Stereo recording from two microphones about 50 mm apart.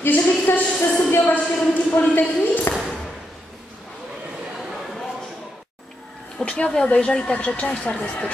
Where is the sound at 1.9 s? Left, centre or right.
Left.